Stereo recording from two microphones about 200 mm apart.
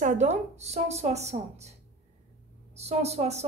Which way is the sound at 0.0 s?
35° right (ahead or behind).